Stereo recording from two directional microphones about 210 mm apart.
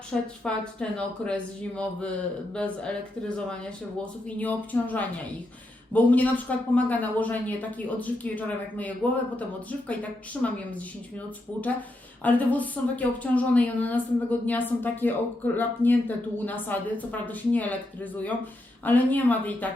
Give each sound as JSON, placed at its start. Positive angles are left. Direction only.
{"t": 0.1, "sound": "a man's voice", "side_deg": 5}
{"t": 12.2, "sound": "speech", "side_deg": 5}